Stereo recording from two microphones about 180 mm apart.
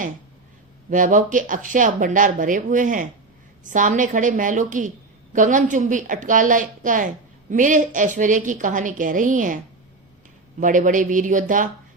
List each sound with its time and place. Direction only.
0.9 s speech: 45° right (ahead or behind)
10.6 s speech: 45° right (ahead or behind)